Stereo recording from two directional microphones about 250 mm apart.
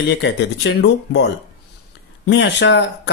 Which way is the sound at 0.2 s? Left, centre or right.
Left.